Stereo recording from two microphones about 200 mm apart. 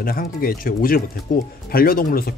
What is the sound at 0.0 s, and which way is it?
Speech, 45° left (ahead or behind).